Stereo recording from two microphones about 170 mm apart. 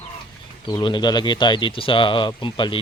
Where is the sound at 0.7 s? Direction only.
25° left (ahead or behind).